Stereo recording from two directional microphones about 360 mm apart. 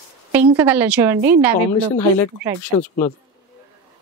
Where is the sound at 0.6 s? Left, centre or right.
Centre.